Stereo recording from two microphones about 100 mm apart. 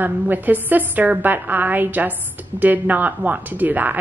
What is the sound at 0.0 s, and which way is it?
A woman's voice, 20° right (ahead or behind).